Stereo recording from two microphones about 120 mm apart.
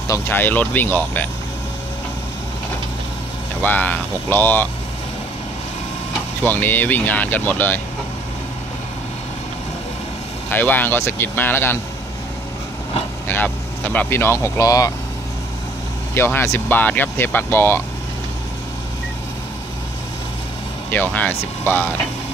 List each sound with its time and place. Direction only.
0.1 s speech: 15° left (ahead or behind)
3.6 s speech: 15° left (ahead or behind)
6.4 s speech: 15° left (ahead or behind)
10.5 s speech: 15° left (ahead or behind)
13.3 s speech: 15° left (ahead or behind)
16.3 s speech: 20° left (ahead or behind)
20.9 s speech: 15° left (ahead or behind)